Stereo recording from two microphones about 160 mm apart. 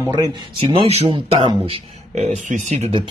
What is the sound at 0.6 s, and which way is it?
Speech, 35° right (ahead or behind).